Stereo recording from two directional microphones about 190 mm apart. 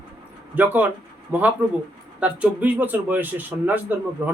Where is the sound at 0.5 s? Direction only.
10° right (ahead or behind).